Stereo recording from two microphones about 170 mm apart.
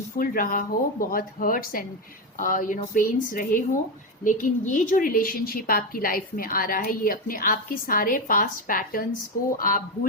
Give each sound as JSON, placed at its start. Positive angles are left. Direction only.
{"t": 0.2, "sound": "a woman's voice", "side_deg": 55}